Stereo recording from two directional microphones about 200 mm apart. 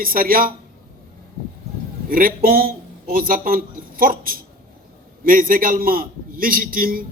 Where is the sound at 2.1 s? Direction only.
45° right (ahead or behind).